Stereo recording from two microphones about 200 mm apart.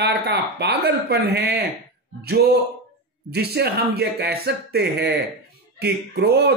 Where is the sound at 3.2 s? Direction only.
55° right (ahead or behind).